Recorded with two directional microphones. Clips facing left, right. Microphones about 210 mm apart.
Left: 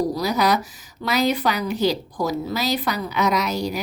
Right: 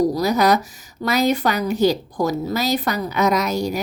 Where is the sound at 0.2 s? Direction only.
45° right (ahead or behind).